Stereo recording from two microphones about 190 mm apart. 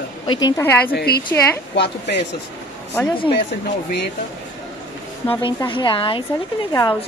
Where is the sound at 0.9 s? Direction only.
55° left (ahead or behind).